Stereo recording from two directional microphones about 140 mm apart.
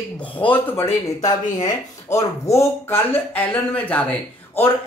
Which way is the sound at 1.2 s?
25° left (ahead or behind).